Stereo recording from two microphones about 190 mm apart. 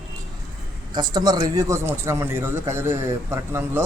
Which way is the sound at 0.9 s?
20° right (ahead or behind).